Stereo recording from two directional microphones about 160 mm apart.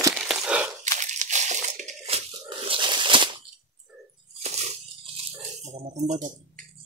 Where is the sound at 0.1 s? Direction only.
5° right (ahead or behind).